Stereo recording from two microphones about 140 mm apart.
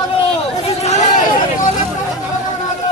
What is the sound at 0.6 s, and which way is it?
Hubbub, 55° left (ahead or behind).